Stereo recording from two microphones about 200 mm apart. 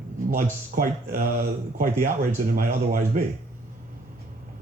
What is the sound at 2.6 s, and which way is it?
Speech, 45° right (ahead or behind).